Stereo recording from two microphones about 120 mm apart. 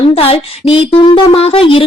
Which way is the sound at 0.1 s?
55° left (ahead or behind).